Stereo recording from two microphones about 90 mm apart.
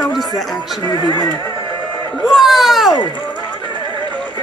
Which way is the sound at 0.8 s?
50° left (ahead or behind).